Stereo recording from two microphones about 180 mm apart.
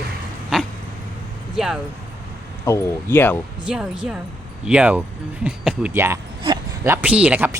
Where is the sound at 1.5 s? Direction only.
Centre (ahead or behind).